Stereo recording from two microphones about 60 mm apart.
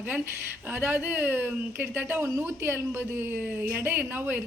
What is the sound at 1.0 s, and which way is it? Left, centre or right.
A woman's voice, right.